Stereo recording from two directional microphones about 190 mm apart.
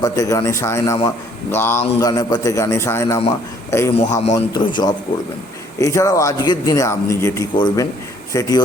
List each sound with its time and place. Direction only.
0.0 s a man's voice: 20° left (ahead or behind)